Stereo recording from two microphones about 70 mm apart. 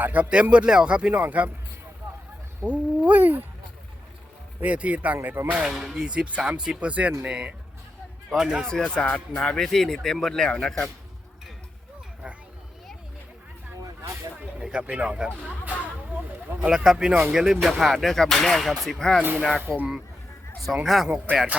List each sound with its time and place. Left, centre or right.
0.0 s speech: right
2.6 s speech: centre
4.6 s speech: right
5.6 s speech: centre
8.3 s speech: centre
8.6 s speech: centre
14.6 s speech: centre
15.8 s a sound: right
16.7 s speech: centre
19.7 s speech: right
20.8 s speech: centre